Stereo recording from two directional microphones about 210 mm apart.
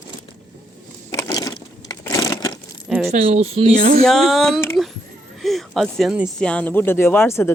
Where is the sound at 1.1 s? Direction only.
15° left (ahead or behind).